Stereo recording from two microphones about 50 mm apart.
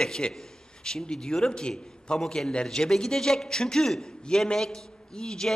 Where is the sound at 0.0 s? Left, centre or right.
Centre.